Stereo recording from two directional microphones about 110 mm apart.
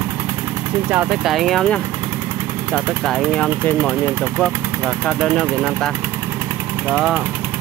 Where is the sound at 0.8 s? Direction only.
15° right (ahead or behind).